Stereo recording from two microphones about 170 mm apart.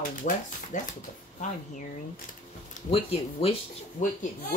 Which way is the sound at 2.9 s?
35° left (ahead or behind).